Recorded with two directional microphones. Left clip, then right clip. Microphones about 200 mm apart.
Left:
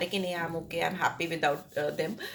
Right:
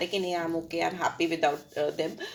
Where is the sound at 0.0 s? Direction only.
30° right (ahead or behind).